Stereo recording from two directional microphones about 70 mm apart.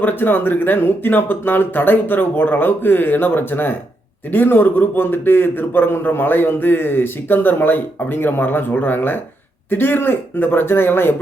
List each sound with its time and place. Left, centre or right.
0.0 s a man's voice: left